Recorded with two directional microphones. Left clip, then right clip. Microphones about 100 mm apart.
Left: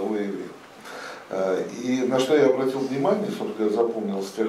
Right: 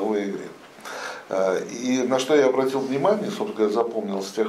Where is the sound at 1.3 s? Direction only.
25° right (ahead or behind).